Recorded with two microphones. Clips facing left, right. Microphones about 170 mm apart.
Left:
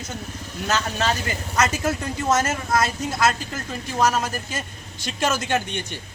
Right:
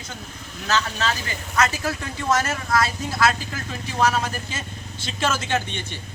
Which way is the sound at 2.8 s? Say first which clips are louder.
Even; 50° left (ahead or behind).